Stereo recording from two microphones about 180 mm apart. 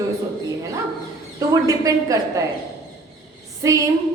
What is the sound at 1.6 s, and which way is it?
Speech, 20° right (ahead or behind).